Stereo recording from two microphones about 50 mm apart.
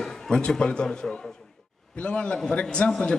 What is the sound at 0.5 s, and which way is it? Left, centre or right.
Speech, centre.